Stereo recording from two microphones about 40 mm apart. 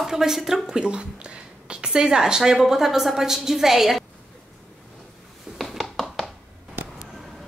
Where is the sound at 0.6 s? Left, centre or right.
Right; by 4.1 s centre.